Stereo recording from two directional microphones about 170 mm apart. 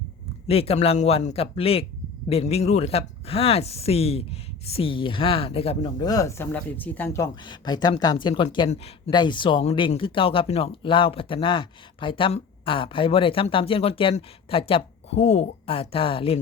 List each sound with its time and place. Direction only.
0.4 s speech: 35° left (ahead or behind)
6.1 s speech: 20° left (ahead or behind)
7.4 s speech: 25° left (ahead or behind)